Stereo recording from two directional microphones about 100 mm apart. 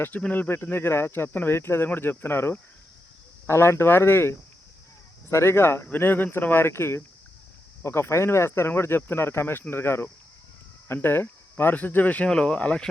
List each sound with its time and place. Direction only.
0.0 s speech: 15° left (ahead or behind)